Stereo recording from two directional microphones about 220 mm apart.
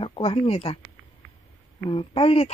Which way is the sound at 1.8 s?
25° left (ahead or behind).